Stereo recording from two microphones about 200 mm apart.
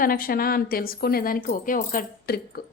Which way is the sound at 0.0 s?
45° left (ahead or behind).